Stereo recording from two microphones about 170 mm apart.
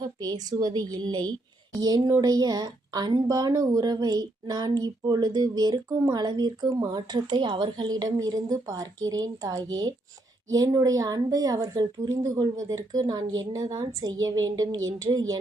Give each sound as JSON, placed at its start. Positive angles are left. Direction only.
{"t": 0.0, "sound": "speech", "side_deg": -25}